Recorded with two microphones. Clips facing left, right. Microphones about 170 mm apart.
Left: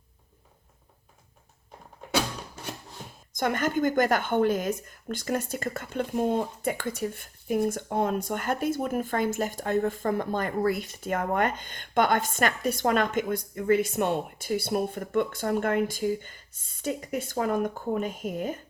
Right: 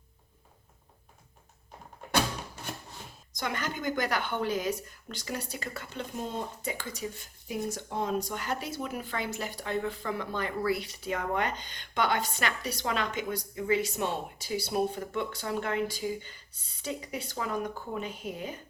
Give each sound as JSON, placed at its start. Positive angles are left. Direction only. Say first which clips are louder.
{"t": 3.3, "sound": "a woman's voice", "louder": "left 8 dB", "side_deg": 50}